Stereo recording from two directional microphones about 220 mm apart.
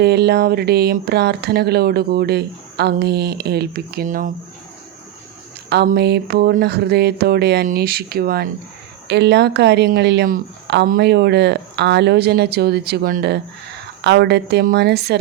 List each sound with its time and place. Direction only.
0.0 s speech: 45° right (ahead or behind)
5.6 s speech: 45° right (ahead or behind)